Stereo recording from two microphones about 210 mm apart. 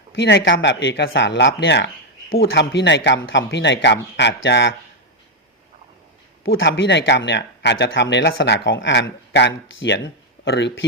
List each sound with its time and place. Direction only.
0.2 s speech: 55° left (ahead or behind)
6.4 s speech: 65° left (ahead or behind)